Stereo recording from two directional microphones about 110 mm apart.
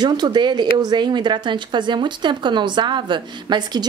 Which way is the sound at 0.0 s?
40° right (ahead or behind).